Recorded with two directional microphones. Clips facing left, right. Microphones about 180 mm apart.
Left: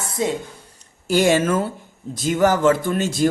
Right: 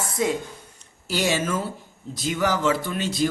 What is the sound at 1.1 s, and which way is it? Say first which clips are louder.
Speech: left 7 dB; 50° left (ahead or behind).